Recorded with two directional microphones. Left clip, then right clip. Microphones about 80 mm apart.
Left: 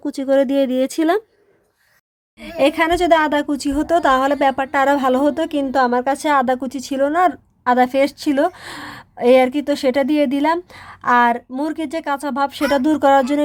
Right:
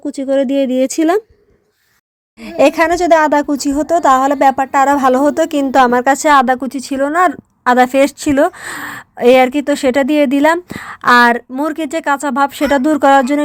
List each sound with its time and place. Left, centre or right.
0.0 s speech: centre
0.8 s speech: centre
2.4 s speech: right
2.9 s speech: right
3.8 s speech: centre
5.7 s a woman's voice: right
6.2 s speech: centre
6.5 s speech: centre
7.1 s speech: centre
7.6 s speech: right
11.6 s speech: right
12.8 s speech: centre